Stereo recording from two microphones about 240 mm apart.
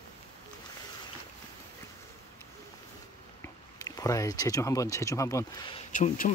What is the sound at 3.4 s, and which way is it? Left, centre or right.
Speech, centre.